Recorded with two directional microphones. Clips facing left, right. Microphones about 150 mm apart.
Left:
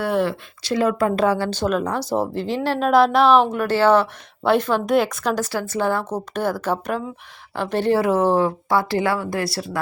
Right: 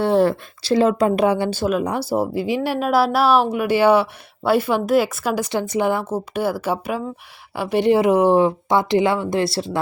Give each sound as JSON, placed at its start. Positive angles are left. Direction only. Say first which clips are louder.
{"t": 0.0, "sound": "a sound", "louder": "right 4 dB", "side_deg": -30}
{"t": 0.6, "sound": "speech", "louder": "right 3 dB", "side_deg": -30}
{"t": 1.5, "sound": "a woman's voice", "louder": "right 1 dB", "side_deg": -5}